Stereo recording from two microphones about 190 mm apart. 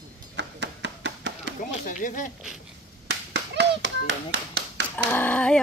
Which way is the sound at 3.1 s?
65° right (ahead or behind).